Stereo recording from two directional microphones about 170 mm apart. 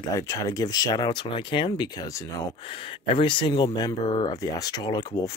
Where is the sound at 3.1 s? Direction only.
30° left (ahead or behind).